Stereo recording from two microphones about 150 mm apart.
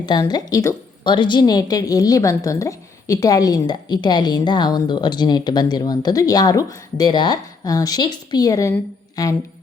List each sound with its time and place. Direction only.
0.0 s a woman's voice: 30° left (ahead or behind)
1.0 s a woman's voice: 30° left (ahead or behind)